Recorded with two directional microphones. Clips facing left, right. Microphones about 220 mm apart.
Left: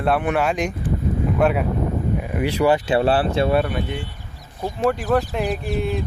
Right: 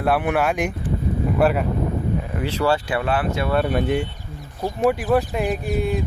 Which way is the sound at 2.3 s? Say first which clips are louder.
Left 4 dB; 15° left (ahead or behind).